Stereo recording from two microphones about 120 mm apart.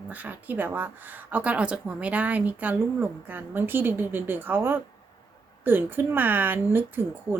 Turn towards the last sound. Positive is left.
turn(degrees=-20)  # may be behind; listen again after turning